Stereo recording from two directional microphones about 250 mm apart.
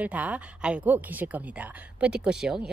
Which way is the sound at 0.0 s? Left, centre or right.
Centre.